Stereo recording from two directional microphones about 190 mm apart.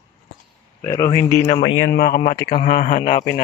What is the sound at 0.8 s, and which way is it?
Speech, 15° left (ahead or behind).